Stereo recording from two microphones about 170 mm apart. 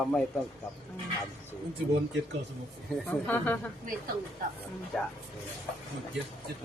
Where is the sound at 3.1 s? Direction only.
10° left (ahead or behind).